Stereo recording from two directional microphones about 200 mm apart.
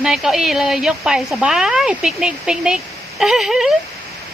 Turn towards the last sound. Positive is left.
turn(degrees=0)  # may be behind; listen again after turning